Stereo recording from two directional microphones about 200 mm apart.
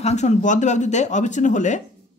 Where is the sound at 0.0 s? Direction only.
35° left (ahead or behind).